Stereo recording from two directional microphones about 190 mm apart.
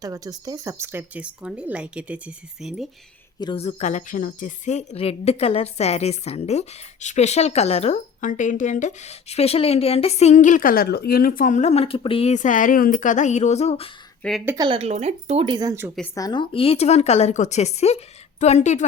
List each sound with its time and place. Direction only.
0.0 s speech: 20° right (ahead or behind); by 2.8 s 5° right (ahead or behind)
3.4 s a woman's voice: 30° left (ahead or behind)
14.2 s speech: centre (ahead or behind)
14.4 s speech: 20° right (ahead or behind)
16.1 s a woman's voice: 20° left (ahead or behind); by 18.9 s 40° left (ahead or behind)